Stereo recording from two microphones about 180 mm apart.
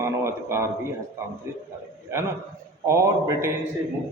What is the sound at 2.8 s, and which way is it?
Speech, 15° right (ahead or behind).